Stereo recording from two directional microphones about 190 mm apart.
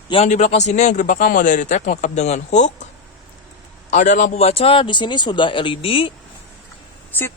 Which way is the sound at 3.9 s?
40° left (ahead or behind).